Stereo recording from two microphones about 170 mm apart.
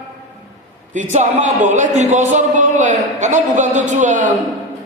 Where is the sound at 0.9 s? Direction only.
45° right (ahead or behind).